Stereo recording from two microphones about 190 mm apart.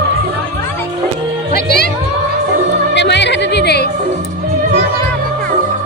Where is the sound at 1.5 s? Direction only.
55° left (ahead or behind).